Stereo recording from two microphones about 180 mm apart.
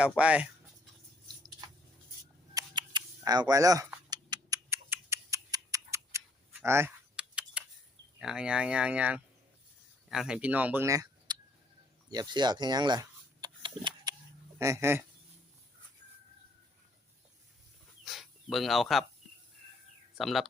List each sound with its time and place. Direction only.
0.2 s speech: 5° right (ahead or behind)
2.6 s camera: 25° right (ahead or behind)
4.1 s tick: 20° right (ahead or behind)
6.6 s typing: 15° right (ahead or behind)
8.2 s speech: 5° right (ahead or behind); by 11.3 s 20° right (ahead or behind)
12.1 s a sound: 25° right (ahead or behind)
14.6 s speech: 15° right (ahead or behind)
18.0 s a sound: centre (ahead or behind)
20.1 s speech: centre (ahead or behind)